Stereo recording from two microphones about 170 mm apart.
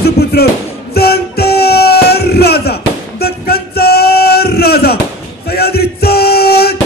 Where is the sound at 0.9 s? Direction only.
70° left (ahead or behind).